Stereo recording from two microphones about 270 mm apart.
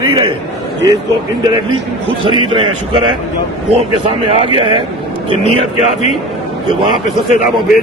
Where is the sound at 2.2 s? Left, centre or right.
Centre.